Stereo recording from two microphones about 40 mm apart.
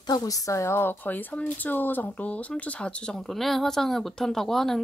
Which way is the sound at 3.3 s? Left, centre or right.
Centre.